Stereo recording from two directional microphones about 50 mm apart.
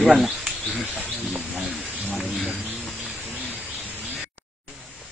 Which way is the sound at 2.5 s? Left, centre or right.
Left.